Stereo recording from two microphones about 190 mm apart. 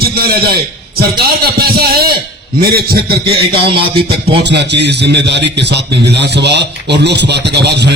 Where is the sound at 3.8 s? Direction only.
25° right (ahead or behind).